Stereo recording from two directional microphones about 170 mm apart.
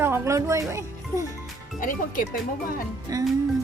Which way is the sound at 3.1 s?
20° right (ahead or behind).